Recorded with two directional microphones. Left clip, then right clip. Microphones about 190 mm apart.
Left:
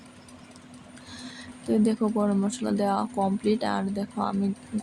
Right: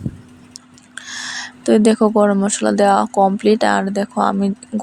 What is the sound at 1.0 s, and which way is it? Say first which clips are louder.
Speech: right 16 dB; 40° right (ahead or behind).